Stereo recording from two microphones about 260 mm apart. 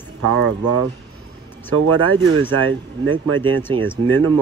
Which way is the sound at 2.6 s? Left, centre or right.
Right.